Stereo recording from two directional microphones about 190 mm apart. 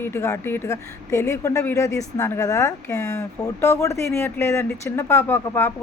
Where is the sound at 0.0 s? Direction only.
15° left (ahead or behind).